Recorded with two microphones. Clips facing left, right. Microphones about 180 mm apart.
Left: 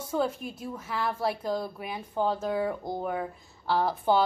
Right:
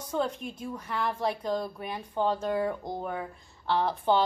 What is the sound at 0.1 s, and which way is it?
A woman's voice, 5° left (ahead or behind).